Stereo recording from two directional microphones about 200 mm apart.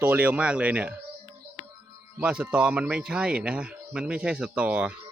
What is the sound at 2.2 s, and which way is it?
Speech, 5° right (ahead or behind).